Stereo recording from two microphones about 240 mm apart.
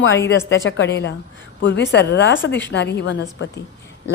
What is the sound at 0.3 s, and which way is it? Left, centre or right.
A woman's voice, left.